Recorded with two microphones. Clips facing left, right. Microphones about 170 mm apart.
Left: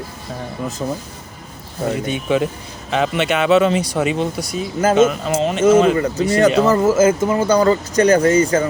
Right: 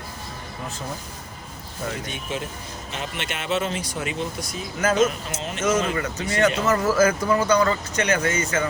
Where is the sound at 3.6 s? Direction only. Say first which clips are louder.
Left 11 dB; 75° left (ahead or behind).